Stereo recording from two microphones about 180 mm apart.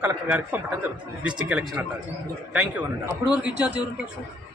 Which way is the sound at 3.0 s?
5° right (ahead or behind).